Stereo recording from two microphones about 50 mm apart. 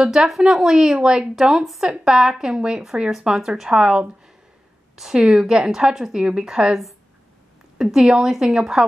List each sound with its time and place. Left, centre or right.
0.1 s speech: centre
1.5 s speech: centre
1.8 s speech: centre
3.7 s speech: centre
5.1 s speech: centre